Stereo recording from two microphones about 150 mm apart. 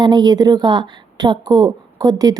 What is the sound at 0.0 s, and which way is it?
Speech, 30° right (ahead or behind).